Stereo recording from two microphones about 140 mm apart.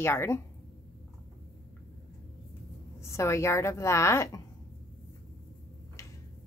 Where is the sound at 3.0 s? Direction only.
20° left (ahead or behind).